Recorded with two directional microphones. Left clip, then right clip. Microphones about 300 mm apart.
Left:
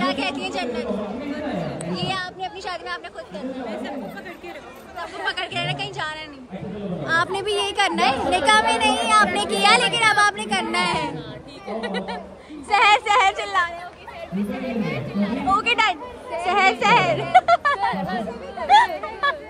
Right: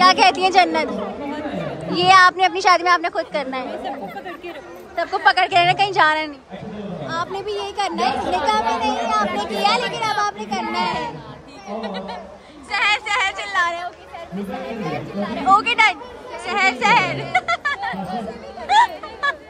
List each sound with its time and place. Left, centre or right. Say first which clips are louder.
0.0 s a sound: right 11 dB; right
2.0 s a woman's voice: right 18 dB; right
4.9 s a woman's voice: right 11 dB; right
7.1 s a woman's voice: left 4 dB; left
12.7 s speech: left 3 dB; centre
15.5 s speech: right 5 dB; centre
18.7 s speech: even; centre